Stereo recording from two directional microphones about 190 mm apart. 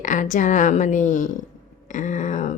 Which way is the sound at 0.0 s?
40° left (ahead or behind).